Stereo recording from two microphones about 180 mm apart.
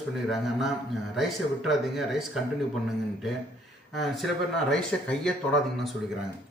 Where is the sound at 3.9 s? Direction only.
Centre (ahead or behind).